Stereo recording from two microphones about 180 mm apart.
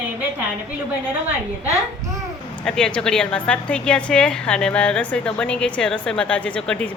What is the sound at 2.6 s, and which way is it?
A woman's voice, 5° left (ahead or behind).